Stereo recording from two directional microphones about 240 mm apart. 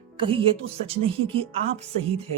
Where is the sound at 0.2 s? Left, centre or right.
Right.